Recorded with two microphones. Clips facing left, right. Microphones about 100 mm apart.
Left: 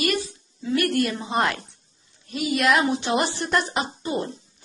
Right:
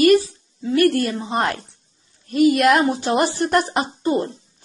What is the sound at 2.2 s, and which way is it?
A woman's voice, 50° right (ahead or behind).